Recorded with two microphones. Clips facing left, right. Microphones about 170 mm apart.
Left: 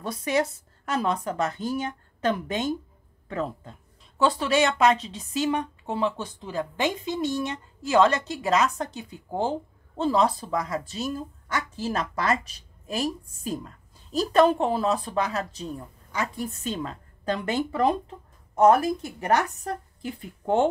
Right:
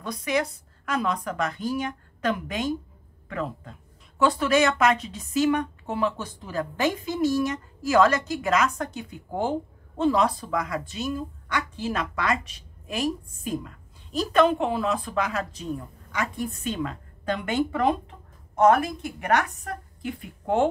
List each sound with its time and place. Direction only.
0.0 s a woman's voice: 30° left (ahead or behind)